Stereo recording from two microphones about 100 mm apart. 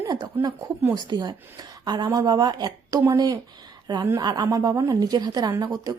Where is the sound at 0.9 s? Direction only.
45° right (ahead or behind).